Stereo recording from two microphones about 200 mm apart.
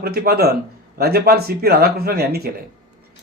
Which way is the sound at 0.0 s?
50° right (ahead or behind).